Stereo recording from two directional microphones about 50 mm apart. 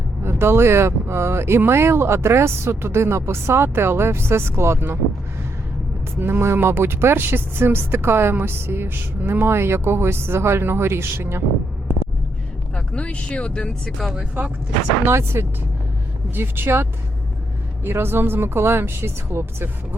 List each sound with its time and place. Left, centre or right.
0.3 s speech: right
6.1 s a woman's voice: right
6.4 s a woman's voice: right
12.7 s speech: left
15.0 s speech: right
16.3 s a woman's voice: right